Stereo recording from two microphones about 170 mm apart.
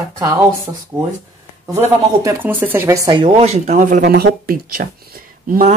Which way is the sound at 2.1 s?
20° right (ahead or behind).